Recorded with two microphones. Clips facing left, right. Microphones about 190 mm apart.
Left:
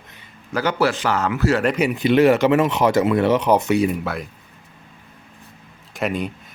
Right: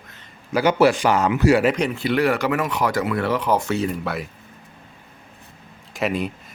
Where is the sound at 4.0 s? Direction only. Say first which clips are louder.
Even; centre (ahead or behind).